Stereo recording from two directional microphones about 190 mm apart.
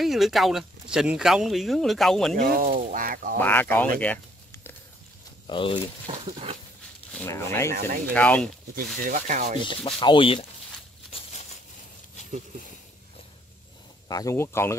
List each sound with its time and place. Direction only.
0.0 s speech: centre (ahead or behind)
2.4 s speech: 50° right (ahead or behind)
3.3 s speech: 10° left (ahead or behind)
4.0 s a sound: 10° left (ahead or behind)
5.5 s rub: 25° left (ahead or behind)
6.0 s rub: 30° right (ahead or behind)
7.2 s speech: 15° left (ahead or behind)
9.0 s rub: 40° right (ahead or behind)
9.7 s rub: 25° left (ahead or behind)
14.0 s speech: 20° left (ahead or behind)